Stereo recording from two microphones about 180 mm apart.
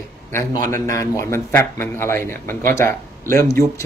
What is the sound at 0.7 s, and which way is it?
A man's voice, 15° left (ahead or behind).